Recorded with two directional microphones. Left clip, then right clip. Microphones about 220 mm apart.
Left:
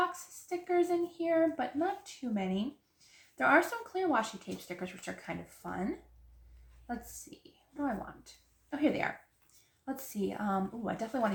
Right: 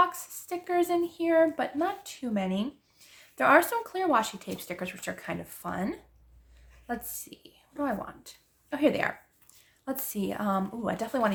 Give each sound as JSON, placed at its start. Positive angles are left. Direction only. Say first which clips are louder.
{"t": 0.1, "sound": "speech", "louder": "right 3 dB", "side_deg": -45}
{"t": 8.7, "sound": "speech", "louder": "right 6 dB", "side_deg": -45}